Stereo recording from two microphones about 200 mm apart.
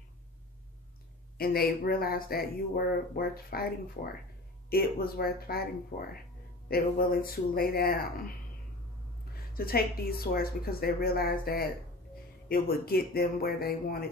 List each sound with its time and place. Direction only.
1.4 s speech: 50° left (ahead or behind)
9.5 s a woman's voice: 50° left (ahead or behind)